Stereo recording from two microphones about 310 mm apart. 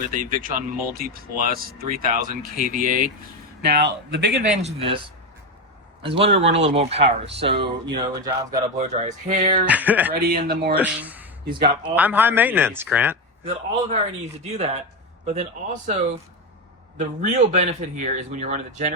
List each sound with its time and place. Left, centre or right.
0.1 s a man's voice: right
4.6 s a man's voice: centre
9.6 s speech: centre
10.2 s a man's voice: right
10.8 s a man's voice: centre
13.4 s speech: centre
17.0 s speech: right